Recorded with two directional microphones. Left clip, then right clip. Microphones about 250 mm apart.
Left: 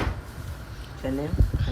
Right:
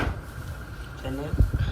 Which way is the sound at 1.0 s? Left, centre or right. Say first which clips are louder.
Left 5 dB; left.